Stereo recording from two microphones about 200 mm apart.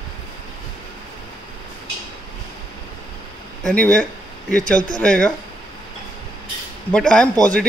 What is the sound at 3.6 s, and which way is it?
A man's voice, 5° left (ahead or behind).